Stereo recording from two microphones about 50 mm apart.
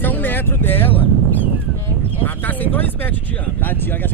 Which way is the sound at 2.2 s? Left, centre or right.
Left.